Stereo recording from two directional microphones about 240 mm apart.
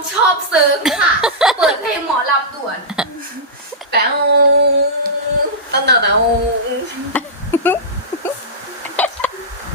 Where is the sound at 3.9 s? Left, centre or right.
Right.